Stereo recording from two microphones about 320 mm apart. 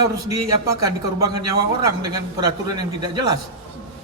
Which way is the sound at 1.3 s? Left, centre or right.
Left.